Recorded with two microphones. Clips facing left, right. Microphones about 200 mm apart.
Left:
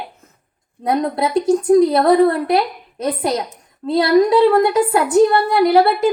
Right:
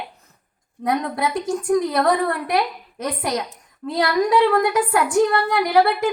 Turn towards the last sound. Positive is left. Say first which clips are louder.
# left 4 dB
turn(degrees=30)  # may be behind; listen again after turning